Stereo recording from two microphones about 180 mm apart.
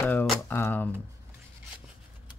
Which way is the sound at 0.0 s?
10° left (ahead or behind).